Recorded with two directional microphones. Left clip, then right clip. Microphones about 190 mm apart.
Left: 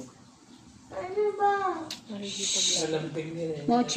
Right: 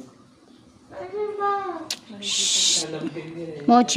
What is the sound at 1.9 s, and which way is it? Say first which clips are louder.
Owl: right 10 dB; 65° right (ahead or behind).